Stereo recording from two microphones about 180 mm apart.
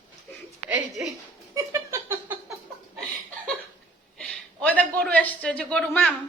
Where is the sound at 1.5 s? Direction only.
15° right (ahead or behind).